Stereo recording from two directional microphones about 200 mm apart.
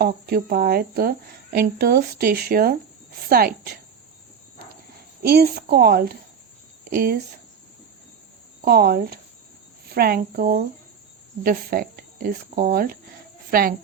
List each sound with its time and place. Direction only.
0.0 s speech: 50° right (ahead or behind)
5.2 s speech: 50° right (ahead or behind)
8.6 s speech: 50° right (ahead or behind)